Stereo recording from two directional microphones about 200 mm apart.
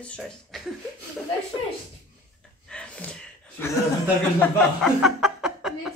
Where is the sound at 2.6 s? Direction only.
5° left (ahead or behind).